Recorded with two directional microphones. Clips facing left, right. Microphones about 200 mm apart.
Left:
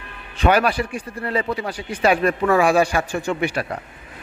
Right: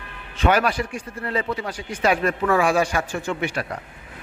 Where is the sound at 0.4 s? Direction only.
10° left (ahead or behind).